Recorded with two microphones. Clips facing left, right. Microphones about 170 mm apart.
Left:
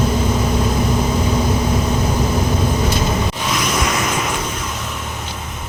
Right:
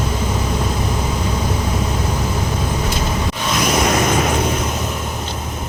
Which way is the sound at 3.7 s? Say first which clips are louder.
Right 4 dB; 40° right (ahead or behind).